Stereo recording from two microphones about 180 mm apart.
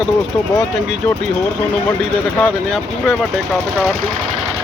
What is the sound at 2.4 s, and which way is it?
Speech, centre (ahead or behind).